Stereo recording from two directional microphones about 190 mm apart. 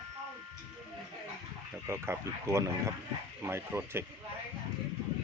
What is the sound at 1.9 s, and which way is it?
Speech, 15° right (ahead or behind).